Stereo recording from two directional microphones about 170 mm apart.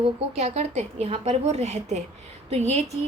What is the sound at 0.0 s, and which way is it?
A woman's voice, 40° right (ahead or behind).